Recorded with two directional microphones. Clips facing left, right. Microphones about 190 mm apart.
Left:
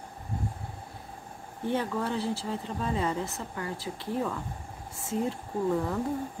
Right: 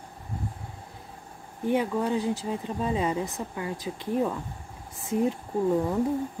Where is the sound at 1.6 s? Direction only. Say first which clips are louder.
Right 4 dB; 15° right (ahead or behind).